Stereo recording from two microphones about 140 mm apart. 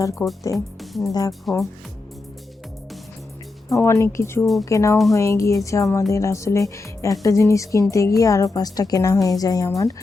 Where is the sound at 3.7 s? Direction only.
20° left (ahead or behind).